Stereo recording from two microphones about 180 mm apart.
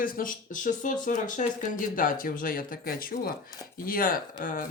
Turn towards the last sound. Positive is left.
turn(degrees=50)  # may be behind; listen again after turning